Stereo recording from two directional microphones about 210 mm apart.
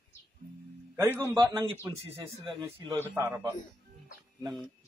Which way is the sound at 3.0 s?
10° right (ahead or behind).